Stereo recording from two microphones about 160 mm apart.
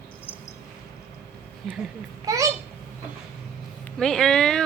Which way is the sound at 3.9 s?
5° left (ahead or behind).